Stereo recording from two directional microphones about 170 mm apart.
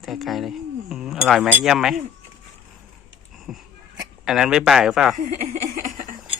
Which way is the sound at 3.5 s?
Centre (ahead or behind).